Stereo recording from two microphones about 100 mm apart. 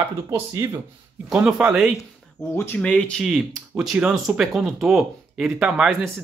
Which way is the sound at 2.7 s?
10° left (ahead or behind).